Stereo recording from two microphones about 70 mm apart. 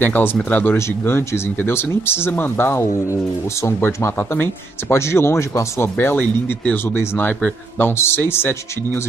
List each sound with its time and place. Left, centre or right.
0.0 s speech: left
2.7 s speech: left